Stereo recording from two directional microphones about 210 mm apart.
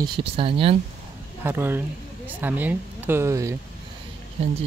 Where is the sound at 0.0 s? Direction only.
25° right (ahead or behind).